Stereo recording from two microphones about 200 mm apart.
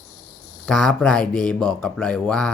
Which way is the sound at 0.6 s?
5° left (ahead or behind).